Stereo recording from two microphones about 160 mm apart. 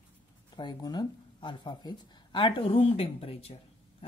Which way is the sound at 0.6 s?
25° left (ahead or behind).